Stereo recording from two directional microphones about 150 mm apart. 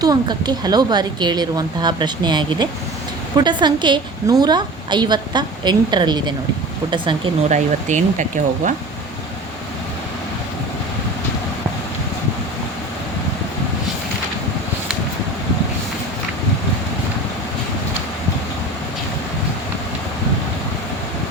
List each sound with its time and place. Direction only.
0.0 s a woman's voice: 25° right (ahead or behind)
7.5 s speech: 55° right (ahead or behind)